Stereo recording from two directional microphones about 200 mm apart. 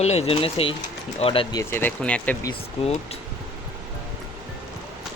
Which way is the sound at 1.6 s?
10° left (ahead or behind).